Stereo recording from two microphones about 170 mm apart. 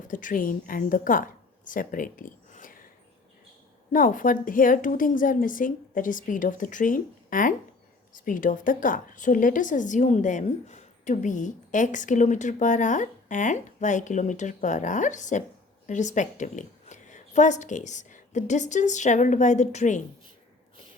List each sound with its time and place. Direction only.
0.1 s a woman's voice: 50° left (ahead or behind)
3.9 s a woman's voice: 50° left (ahead or behind)